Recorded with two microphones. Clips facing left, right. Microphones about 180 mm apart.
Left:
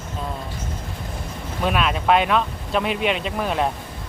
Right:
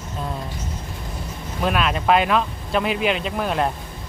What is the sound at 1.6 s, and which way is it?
Speech, centre (ahead or behind).